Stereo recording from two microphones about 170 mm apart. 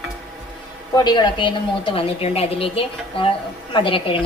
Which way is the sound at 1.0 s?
25° left (ahead or behind).